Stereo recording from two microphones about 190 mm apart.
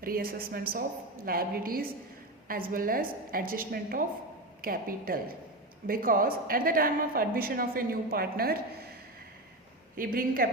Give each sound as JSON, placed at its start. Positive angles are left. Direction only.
{"t": 0.0, "sound": "a woman's voice", "side_deg": -50}
{"t": 9.9, "sound": "a woman's voice", "side_deg": -50}